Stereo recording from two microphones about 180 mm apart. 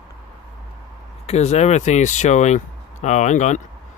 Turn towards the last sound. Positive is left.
turn(degrees=40)  # may be behind; listen again after turning